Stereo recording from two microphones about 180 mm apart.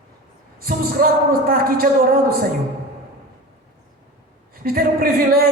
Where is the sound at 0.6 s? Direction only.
55° right (ahead or behind).